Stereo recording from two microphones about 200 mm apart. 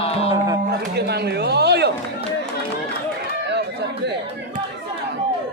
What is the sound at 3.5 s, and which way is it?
Chatter, 60° right (ahead or behind).